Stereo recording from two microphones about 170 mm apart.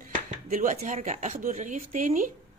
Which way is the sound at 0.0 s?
50° right (ahead or behind).